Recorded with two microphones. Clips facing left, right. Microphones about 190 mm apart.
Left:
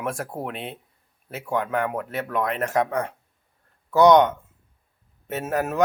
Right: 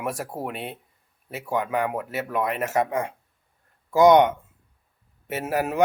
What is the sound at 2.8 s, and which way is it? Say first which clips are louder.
A man's voice: even; 20° right (ahead or behind).